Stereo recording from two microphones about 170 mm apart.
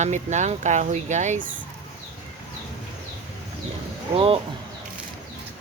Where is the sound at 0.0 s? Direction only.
45° right (ahead or behind).